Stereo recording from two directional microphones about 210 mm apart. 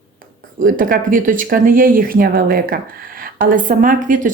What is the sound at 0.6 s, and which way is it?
Speech, 40° right (ahead or behind).